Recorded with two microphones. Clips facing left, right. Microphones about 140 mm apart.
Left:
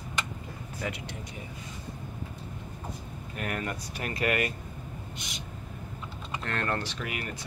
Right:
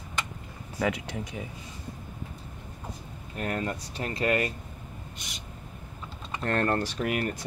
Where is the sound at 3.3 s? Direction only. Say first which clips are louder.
Right 3 dB; 30° right (ahead or behind).